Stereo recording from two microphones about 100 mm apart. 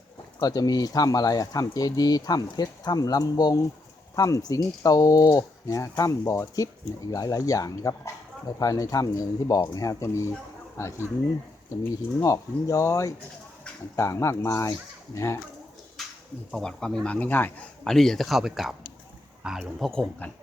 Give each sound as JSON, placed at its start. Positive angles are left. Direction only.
{"t": 0.3, "sound": "speech", "side_deg": 40}
{"t": 12.2, "sound": "speech", "side_deg": 35}
{"t": 16.0, "sound": "a sound", "side_deg": 0}
{"t": 16.5, "sound": "speech", "side_deg": 5}
{"t": 17.8, "sound": "speech", "side_deg": 5}
{"t": 19.9, "sound": "speech", "side_deg": 10}